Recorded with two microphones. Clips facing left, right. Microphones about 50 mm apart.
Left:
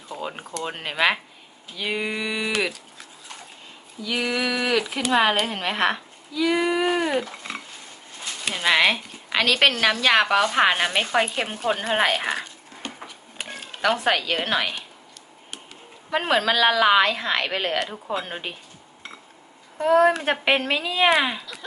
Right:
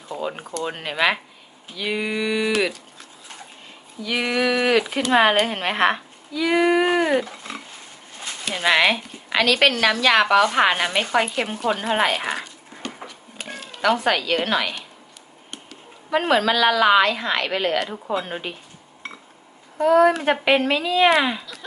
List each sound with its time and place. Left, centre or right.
0.1 s a sound: centre
0.5 s speech: centre
4.0 s speech: right
8.6 s speech: centre
11.4 s a woman's voice: centre
11.8 s speech: centre
14.0 s a woman's voice: centre
16.0 s speech: centre
19.8 s speech: centre